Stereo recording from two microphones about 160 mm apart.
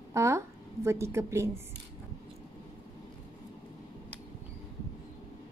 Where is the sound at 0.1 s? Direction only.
15° right (ahead or behind).